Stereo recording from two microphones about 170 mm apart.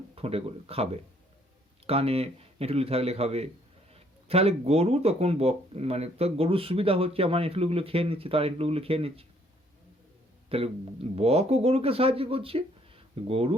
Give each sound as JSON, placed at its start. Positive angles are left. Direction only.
{"t": 0.2, "sound": "speech", "side_deg": -35}
{"t": 1.9, "sound": "speech", "side_deg": -35}
{"t": 10.5, "sound": "speech", "side_deg": -35}